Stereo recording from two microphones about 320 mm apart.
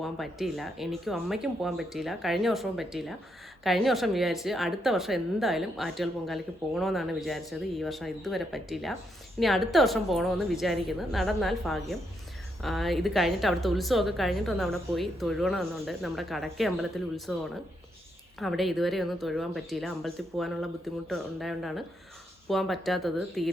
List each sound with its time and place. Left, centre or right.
0.0 s a woman's voice: centre
18.3 s a woman's voice: centre